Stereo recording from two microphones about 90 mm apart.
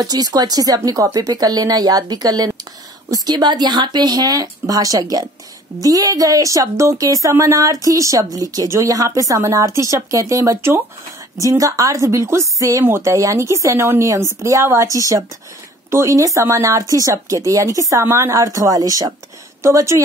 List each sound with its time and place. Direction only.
0.0 s speech: 45° right (ahead or behind)